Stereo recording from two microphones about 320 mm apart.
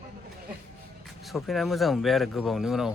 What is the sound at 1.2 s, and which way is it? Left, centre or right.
Speech, centre.